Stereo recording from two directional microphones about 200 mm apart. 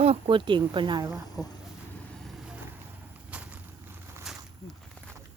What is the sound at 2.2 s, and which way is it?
Boat, centre (ahead or behind).